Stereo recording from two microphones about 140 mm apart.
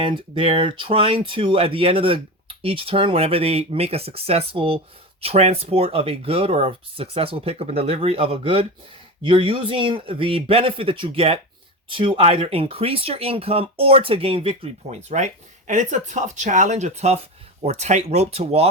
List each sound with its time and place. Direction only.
0.0 s speech: 40° right (ahead or behind)
14.8 s speech: 55° right (ahead or behind)